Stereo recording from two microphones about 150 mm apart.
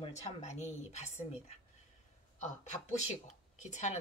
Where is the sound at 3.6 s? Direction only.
50° left (ahead or behind).